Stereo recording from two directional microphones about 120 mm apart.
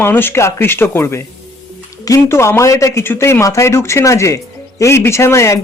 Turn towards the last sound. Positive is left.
turn(degrees=25)  # may be behind; listen again after turning